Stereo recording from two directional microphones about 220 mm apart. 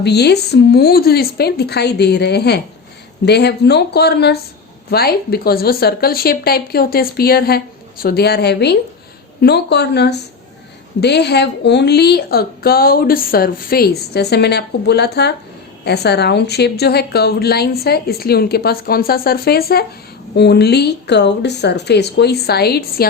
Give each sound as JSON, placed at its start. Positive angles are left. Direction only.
{"t": 0.0, "sound": "a woman's voice", "side_deg": 50}